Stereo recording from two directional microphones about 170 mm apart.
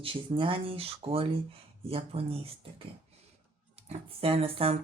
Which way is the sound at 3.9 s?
35° right (ahead or behind).